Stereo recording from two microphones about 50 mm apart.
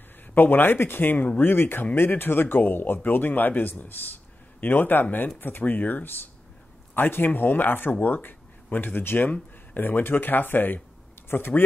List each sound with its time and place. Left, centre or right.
0.3 s speech: left
1.5 s speech: left